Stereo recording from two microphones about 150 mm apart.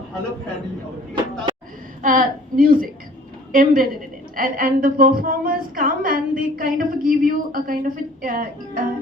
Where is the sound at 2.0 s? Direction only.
70° right (ahead or behind).